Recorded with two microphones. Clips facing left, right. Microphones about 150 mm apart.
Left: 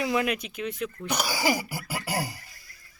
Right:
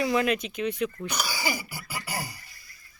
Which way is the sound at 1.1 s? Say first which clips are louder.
Left 5 dB; 90° left.